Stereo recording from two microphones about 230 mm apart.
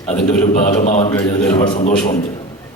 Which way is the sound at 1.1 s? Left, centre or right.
Centre.